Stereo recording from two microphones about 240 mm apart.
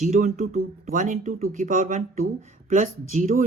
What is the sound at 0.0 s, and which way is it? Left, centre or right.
Speech, right.